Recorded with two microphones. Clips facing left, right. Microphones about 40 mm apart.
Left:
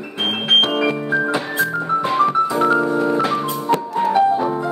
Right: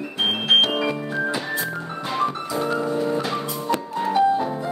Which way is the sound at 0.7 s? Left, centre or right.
Left.